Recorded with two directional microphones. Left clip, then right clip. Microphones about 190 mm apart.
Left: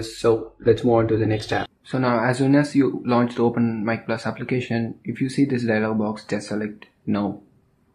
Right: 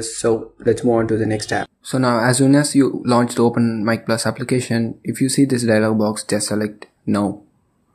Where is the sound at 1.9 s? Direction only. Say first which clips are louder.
Right 4 dB; 35° right (ahead or behind).